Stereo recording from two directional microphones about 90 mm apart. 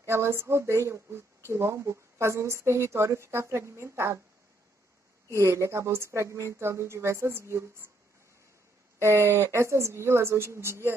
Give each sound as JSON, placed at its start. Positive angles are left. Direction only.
{"t": 0.0, "sound": "speech", "side_deg": -30}
{"t": 5.3, "sound": "speech", "side_deg": -30}
{"t": 9.0, "sound": "speech", "side_deg": -30}